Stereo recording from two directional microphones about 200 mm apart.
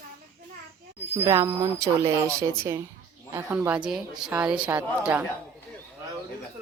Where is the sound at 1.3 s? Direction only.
15° right (ahead or behind).